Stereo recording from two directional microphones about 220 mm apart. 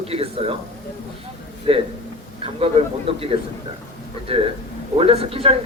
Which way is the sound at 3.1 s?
25° right (ahead or behind).